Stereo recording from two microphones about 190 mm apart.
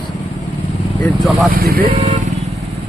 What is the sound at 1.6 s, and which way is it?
Speech, 50° right (ahead or behind).